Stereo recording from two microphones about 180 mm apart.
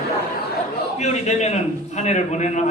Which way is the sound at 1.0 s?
40° left (ahead or behind).